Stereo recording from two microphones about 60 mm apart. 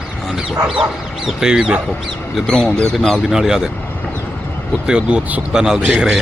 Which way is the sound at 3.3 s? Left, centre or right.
Centre.